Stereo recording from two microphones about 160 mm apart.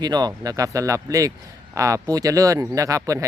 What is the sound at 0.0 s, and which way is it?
Speech, 25° right (ahead or behind).